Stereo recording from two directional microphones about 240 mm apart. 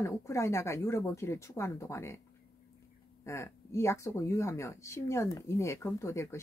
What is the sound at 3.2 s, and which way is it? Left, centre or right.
Speech, centre.